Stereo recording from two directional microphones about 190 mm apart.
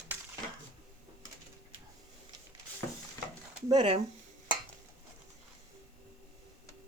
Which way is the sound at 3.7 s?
25° right (ahead or behind).